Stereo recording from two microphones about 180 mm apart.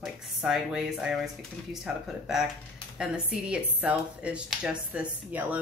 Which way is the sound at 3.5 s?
5° right (ahead or behind).